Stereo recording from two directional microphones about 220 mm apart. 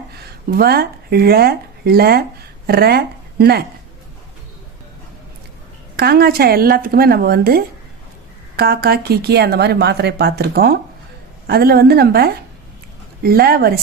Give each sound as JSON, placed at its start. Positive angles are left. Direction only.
{"t": 0.5, "sound": "speech", "side_deg": -45}
{"t": 6.0, "sound": "speech", "side_deg": -45}